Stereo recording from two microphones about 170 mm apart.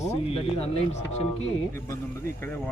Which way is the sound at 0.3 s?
35° left (ahead or behind).